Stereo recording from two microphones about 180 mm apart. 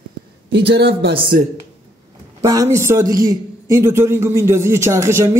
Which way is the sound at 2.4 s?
20° right (ahead or behind).